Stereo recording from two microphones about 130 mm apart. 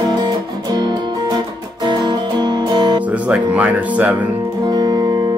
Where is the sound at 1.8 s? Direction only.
35° right (ahead or behind).